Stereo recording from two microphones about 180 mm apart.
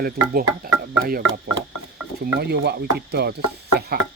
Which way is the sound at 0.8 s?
55° right (ahead or behind).